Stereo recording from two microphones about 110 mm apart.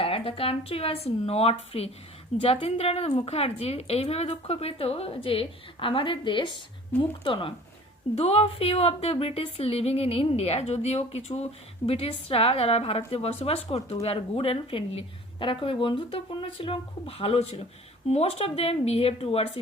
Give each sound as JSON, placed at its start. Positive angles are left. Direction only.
{"t": 0.0, "sound": "a woman's voice", "side_deg": 60}
{"t": 8.1, "sound": "a woman's voice", "side_deg": 65}
{"t": 11.9, "sound": "a woman's voice", "side_deg": 60}